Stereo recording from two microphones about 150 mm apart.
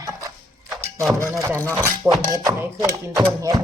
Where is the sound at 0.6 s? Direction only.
Centre (ahead or behind).